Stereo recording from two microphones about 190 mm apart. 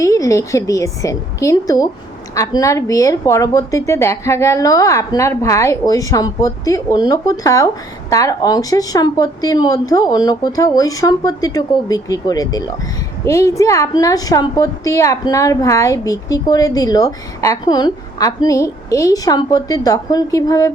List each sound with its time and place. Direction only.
0.0 s a woman's voice: 15° left (ahead or behind)